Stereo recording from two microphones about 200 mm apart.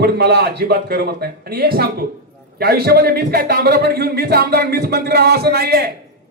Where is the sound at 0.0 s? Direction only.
55° right (ahead or behind).